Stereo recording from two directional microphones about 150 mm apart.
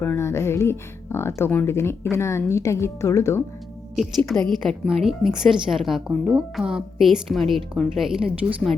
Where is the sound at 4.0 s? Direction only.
Centre (ahead or behind).